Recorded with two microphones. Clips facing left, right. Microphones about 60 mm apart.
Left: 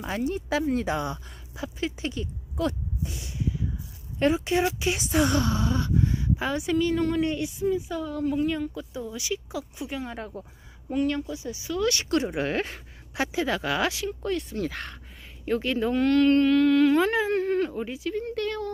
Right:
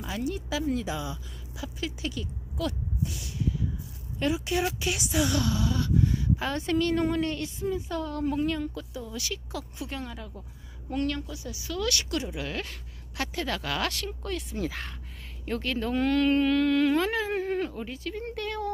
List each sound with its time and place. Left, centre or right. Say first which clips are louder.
0.0 s speech: left 3 dB; left
0.7 s speech: left 5 dB; left
1.6 s speech: left 4 dB; left
6.6 s a woman's voice: left 1 dB; centre
8.5 s a woman's voice: left 2 dB; centre
10.1 s speech: left 6 dB; left
11.1 s a woman's voice: left 4 dB; left; by 17.1 s centre
17.3 s a sound: left 4 dB; centre
17.7 s a woman's voice: left 5 dB; centre
18.3 s speech: left 3 dB; centre